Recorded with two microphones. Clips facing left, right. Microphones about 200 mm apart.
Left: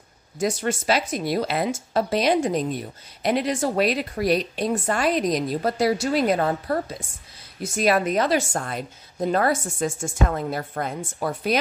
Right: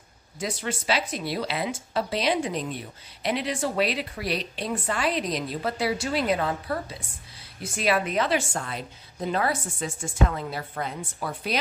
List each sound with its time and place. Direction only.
0.4 s speech: 45° left (ahead or behind)